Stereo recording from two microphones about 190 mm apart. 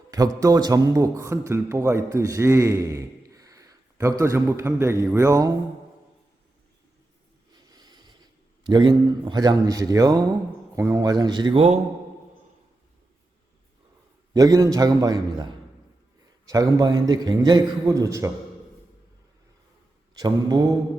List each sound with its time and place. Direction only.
0.1 s a man's voice: 20° right (ahead or behind)
7.7 s a sound: 20° right (ahead or behind)
8.6 s a man's voice: 25° right (ahead or behind)
14.3 s a man's voice: 20° right (ahead or behind)
16.5 s a man's voice: 20° right (ahead or behind)
20.1 s a man's voice: 20° right (ahead or behind)